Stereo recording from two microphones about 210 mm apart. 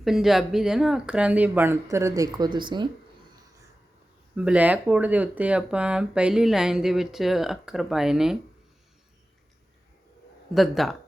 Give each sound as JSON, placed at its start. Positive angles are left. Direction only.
{"t": 0.0, "sound": "speech", "side_deg": 0}
{"t": 4.4, "sound": "speech", "side_deg": -5}
{"t": 10.5, "sound": "speech", "side_deg": 0}